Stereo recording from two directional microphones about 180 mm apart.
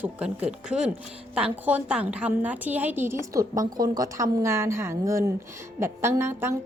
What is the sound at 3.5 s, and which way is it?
Speech, 45° right (ahead or behind).